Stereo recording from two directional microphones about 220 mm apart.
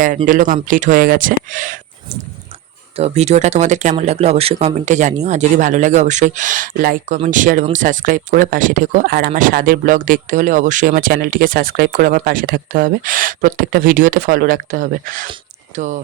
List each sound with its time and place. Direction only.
0.3 s speech: 35° right (ahead or behind)
2.9 s speech: 30° right (ahead or behind)